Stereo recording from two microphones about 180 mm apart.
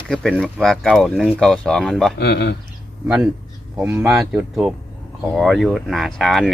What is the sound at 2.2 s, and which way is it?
Speech, 70° left (ahead or behind).